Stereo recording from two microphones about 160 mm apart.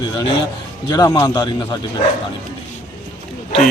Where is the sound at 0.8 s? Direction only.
25° left (ahead or behind).